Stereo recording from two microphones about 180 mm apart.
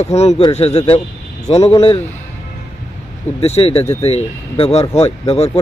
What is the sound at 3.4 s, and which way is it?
Speech, 35° left (ahead or behind).